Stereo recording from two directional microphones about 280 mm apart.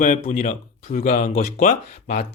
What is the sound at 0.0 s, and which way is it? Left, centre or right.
Speech, left.